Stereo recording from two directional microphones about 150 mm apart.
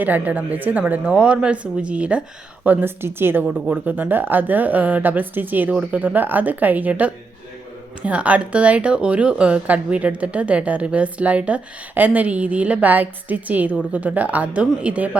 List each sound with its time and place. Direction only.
0.0 s speech: 10° right (ahead or behind)